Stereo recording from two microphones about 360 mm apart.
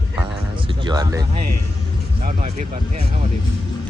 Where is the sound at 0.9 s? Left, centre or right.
Centre.